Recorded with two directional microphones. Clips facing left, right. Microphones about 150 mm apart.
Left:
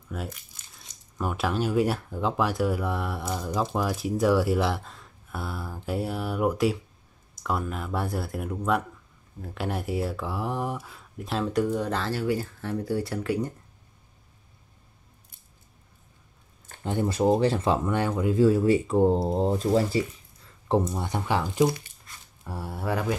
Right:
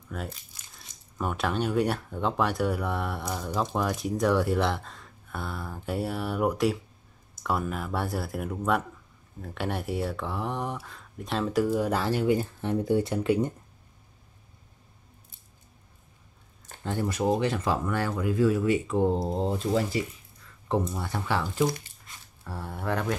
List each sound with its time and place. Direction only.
0.1 s speech: 5° left (ahead or behind); by 13.5 s 20° right (ahead or behind)
16.8 s speech: 20° left (ahead or behind)